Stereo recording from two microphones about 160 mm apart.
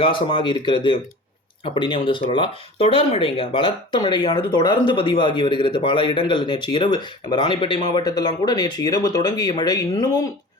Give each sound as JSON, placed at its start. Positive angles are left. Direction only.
{"t": 0.0, "sound": "speech", "side_deg": 30}